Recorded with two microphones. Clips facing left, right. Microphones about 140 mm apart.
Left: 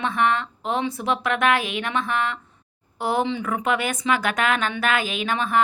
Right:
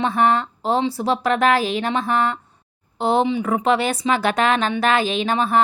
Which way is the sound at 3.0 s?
25° right (ahead or behind).